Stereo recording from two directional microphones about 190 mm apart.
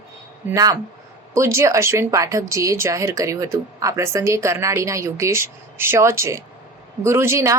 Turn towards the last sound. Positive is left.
turn(degrees=-15)  # may be behind; listen again after turning